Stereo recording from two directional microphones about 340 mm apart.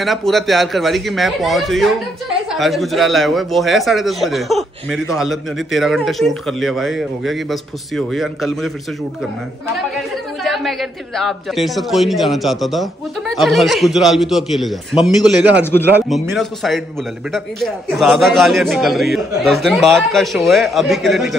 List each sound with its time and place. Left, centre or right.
0.0 s a man's voice: centre
10.4 s a man's voice: centre